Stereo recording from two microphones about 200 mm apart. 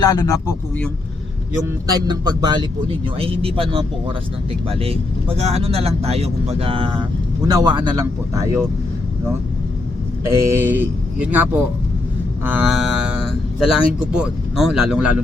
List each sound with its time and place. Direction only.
0.0 s speech: 20° left (ahead or behind)
1.9 s speech: 20° right (ahead or behind)
10.4 s speech: 10° right (ahead or behind)